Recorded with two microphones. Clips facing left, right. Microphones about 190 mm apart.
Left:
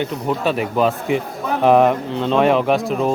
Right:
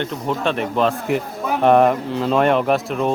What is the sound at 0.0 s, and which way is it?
Speech, 5° left (ahead or behind).